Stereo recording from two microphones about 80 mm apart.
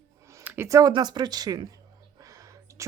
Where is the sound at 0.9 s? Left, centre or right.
Right.